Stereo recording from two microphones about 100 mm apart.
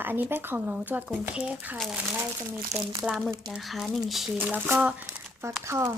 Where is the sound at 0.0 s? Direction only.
20° right (ahead or behind).